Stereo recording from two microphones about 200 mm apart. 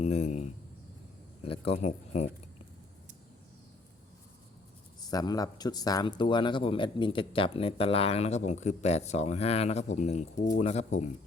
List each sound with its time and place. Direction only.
0.0 s a sound: 35° left (ahead or behind)
1.5 s speech: 30° left (ahead or behind)
5.0 s speech: 20° left (ahead or behind)